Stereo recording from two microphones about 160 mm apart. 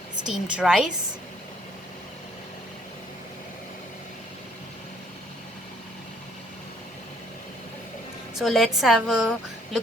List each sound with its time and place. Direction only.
0.3 s a woman's voice: 5° right (ahead or behind)
8.4 s a woman's voice: centre (ahead or behind)